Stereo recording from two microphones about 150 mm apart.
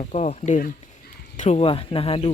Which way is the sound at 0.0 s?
45° left (ahead or behind).